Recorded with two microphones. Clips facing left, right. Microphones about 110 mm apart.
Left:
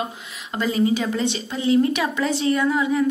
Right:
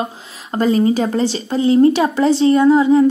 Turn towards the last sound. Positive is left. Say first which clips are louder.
# right 9 dB
turn(degrees=-30)  # may be behind; listen again after turning